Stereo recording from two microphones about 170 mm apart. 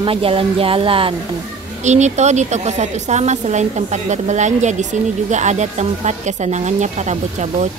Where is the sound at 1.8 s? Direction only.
45° right (ahead or behind).